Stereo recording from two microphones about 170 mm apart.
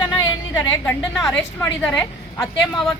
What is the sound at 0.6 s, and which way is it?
A woman's voice, 15° left (ahead or behind).